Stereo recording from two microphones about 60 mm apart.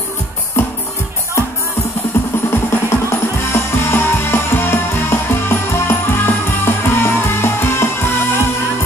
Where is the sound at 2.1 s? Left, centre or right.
Left.